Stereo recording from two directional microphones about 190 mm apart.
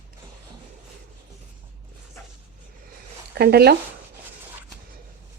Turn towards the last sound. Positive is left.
turn(degrees=-55)  # may be behind; listen again after turning